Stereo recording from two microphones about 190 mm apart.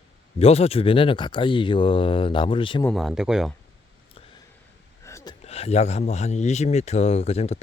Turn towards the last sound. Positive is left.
turn(degrees=35)  # may be behind; listen again after turning